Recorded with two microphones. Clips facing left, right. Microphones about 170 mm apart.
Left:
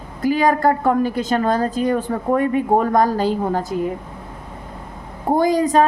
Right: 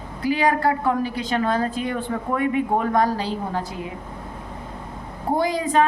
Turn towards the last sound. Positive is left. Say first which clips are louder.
# left 5 dB
turn(degrees=40)  # may be behind; listen again after turning